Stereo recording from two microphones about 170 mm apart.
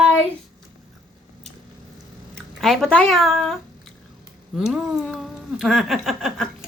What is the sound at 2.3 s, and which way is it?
Speech, centre (ahead or behind).